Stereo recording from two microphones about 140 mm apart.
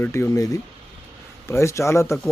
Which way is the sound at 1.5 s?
20° left (ahead or behind).